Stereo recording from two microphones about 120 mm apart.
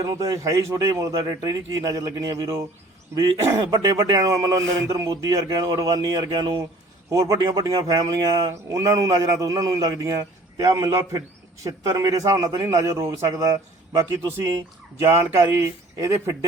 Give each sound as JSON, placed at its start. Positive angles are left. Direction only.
{"t": 0.1, "sound": "speech", "side_deg": -30}